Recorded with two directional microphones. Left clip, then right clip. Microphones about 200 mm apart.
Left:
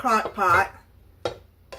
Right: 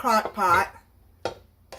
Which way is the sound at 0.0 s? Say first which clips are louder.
Left 1 dB; 45° right (ahead or behind).